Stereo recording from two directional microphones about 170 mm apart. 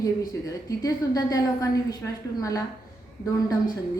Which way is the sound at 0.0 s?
20° left (ahead or behind).